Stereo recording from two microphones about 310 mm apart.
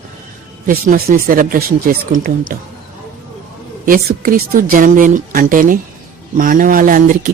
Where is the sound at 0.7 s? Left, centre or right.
Right.